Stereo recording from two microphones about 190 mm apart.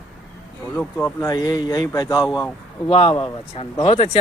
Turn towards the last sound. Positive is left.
turn(degrees=30)  # may be behind; listen again after turning